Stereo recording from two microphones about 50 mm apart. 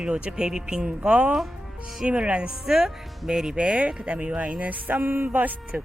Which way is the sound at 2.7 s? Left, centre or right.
Centre.